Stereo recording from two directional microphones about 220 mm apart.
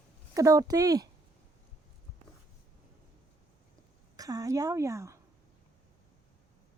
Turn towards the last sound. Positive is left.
turn(degrees=-15)  # may be behind; listen again after turning